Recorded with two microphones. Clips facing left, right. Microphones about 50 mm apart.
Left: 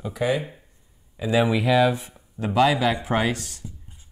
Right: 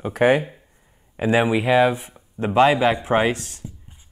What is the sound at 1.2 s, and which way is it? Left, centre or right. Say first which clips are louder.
Speech: right 3 dB; right.